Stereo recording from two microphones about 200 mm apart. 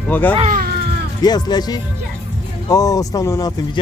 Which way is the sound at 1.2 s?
20° left (ahead or behind).